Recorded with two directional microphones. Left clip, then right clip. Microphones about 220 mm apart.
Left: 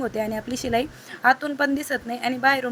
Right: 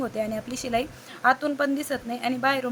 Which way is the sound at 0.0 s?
10° left (ahead or behind).